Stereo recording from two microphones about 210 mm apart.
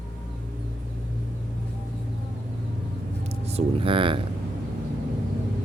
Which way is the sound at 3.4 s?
25° right (ahead or behind).